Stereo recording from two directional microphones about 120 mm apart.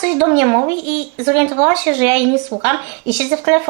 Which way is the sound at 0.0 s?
25° right (ahead or behind).